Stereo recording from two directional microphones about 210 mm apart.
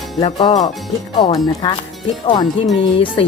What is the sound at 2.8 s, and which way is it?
Speech, 25° left (ahead or behind).